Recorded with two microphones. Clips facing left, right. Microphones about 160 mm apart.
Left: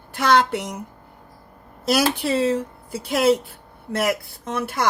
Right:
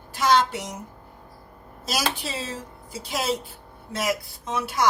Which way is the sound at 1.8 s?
60° left (ahead or behind).